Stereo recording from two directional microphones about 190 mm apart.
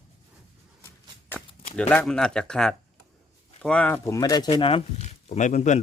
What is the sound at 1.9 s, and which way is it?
A man's voice, 5° left (ahead or behind).